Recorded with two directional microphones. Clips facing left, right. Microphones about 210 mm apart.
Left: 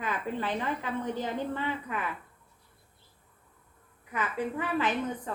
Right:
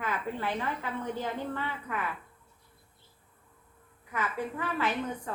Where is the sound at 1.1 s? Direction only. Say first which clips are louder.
Left 2 dB; 20° left (ahead or behind).